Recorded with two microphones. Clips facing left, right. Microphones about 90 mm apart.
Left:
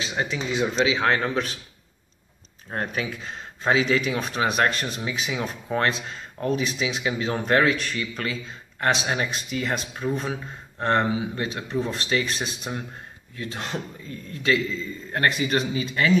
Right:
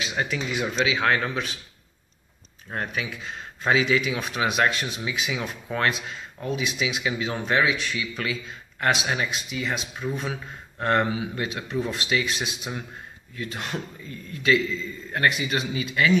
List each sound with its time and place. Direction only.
0.0 s speech: 25° left (ahead or behind)
2.7 s speech: 35° left (ahead or behind)
5.1 s speech: 35° left (ahead or behind)
10.1 s speech: 30° left (ahead or behind)
13.4 s speech: 30° left (ahead or behind)